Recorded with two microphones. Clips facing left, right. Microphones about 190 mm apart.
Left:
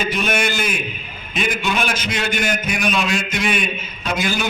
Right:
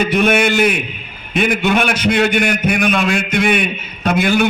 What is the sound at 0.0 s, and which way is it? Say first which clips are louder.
A man's voice: right 7 dB; 60° right (ahead or behind).